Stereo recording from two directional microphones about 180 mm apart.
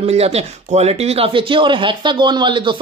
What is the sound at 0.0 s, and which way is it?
Speech, 35° right (ahead or behind).